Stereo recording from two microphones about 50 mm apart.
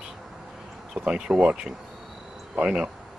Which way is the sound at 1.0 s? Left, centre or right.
Centre.